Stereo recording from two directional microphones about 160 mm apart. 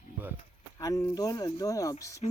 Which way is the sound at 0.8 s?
20° left (ahead or behind).